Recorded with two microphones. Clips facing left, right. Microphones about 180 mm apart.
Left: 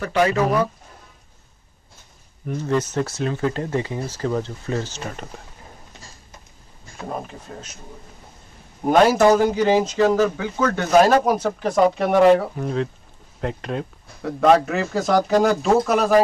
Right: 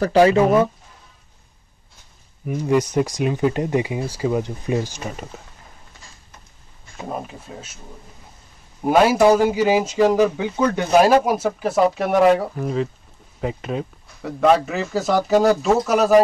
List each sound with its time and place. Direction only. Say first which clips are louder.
0.0 s speech: right 5 dB; 30° right (ahead or behind)
2.4 s speech: right 3 dB; 10° right (ahead or behind)
7.1 s speech: right 1 dB; 5° right (ahead or behind)
8.8 s speech: even; 5° right (ahead or behind)